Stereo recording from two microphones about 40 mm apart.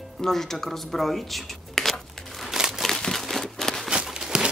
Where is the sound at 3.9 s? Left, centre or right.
Centre.